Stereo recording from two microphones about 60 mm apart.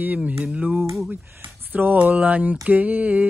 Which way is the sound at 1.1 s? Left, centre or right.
Right.